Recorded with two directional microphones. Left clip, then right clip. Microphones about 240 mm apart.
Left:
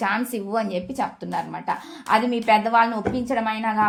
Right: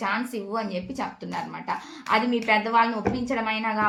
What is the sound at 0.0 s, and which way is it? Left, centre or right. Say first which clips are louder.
A woman's voice: left 3 dB; left.